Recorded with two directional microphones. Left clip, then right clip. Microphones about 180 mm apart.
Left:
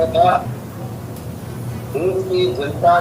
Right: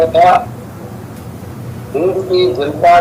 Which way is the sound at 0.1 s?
50° right (ahead or behind).